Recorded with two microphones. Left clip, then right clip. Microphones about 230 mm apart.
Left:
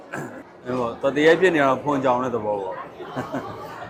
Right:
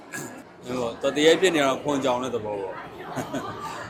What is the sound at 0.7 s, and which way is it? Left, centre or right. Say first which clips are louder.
A man's voice: left 3 dB; left.